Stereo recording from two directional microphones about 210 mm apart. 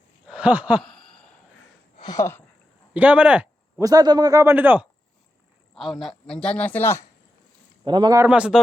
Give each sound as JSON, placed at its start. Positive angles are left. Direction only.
{"t": 0.3, "sound": "a sound", "side_deg": -5}
{"t": 2.0, "sound": "speech", "side_deg": 15}
{"t": 2.9, "sound": "speech", "side_deg": -5}
{"t": 3.8, "sound": "a man's voice", "side_deg": -20}
{"t": 6.0, "sound": "speech", "side_deg": 0}
{"t": 7.9, "sound": "a man's voice", "side_deg": -20}